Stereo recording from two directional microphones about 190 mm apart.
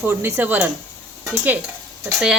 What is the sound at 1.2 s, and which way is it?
Stir, 10° right (ahead or behind).